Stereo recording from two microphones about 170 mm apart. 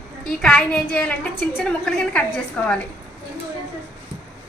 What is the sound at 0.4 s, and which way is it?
A woman's voice, 5° left (ahead or behind).